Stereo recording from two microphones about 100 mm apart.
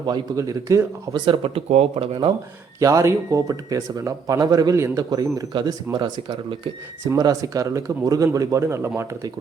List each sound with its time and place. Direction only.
0.3 s speech: 30° right (ahead or behind)
1.1 s speech: 55° right (ahead or behind)
2.8 s speech: 30° right (ahead or behind); by 6.6 s 50° right (ahead or behind)
7.2 s speech: 40° right (ahead or behind)